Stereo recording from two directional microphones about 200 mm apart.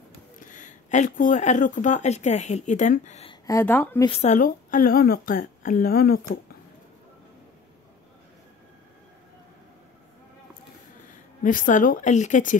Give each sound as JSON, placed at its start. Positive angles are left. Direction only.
{"t": 0.4, "sound": "speech", "side_deg": 40}
{"t": 3.4, "sound": "speech", "side_deg": 10}
{"t": 4.0, "sound": "speech", "side_deg": 30}
{"t": 11.4, "sound": "a woman's voice", "side_deg": 40}